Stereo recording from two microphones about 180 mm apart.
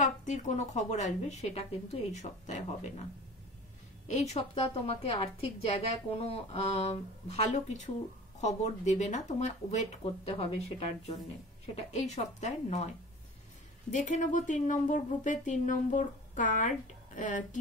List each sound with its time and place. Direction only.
0.2 s speech: 40° left (ahead or behind)
4.1 s speech: 40° left (ahead or behind)